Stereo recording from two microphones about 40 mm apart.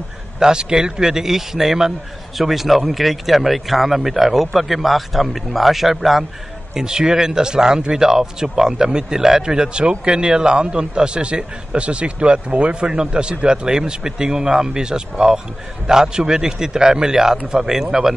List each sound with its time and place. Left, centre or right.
0.4 s a man's voice: centre
6.7 s a man's voice: centre